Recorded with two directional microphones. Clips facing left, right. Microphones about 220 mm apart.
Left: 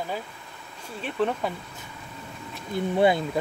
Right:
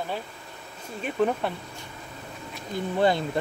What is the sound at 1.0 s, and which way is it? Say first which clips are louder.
Speech: right 1 dB; 5° right (ahead or behind).